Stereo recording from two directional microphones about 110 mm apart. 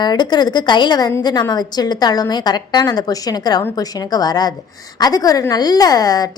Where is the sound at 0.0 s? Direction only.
40° left (ahead or behind).